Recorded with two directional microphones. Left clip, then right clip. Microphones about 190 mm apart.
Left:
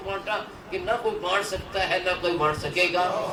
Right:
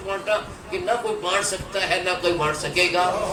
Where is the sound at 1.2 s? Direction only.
45° right (ahead or behind).